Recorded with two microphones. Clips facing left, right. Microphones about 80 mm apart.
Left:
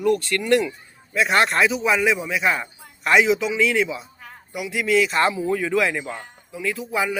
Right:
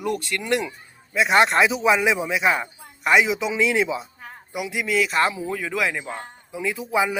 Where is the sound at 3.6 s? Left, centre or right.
Centre.